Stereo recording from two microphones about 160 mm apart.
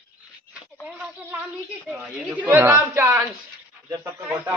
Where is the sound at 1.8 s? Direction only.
Centre (ahead or behind).